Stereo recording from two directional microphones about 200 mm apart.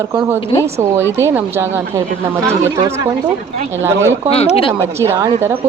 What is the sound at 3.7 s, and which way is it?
Speech, 10° right (ahead or behind).